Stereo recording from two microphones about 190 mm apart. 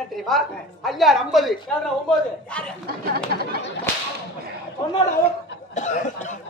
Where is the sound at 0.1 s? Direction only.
Centre (ahead or behind).